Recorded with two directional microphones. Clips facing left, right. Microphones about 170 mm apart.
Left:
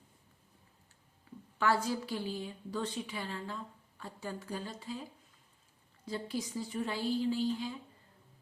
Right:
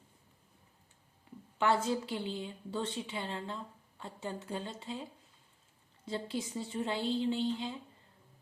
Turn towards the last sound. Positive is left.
turn(degrees=-25)  # may be behind; listen again after turning